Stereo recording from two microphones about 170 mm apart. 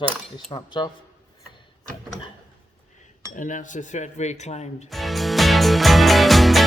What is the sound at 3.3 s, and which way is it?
Speech, 50° left (ahead or behind).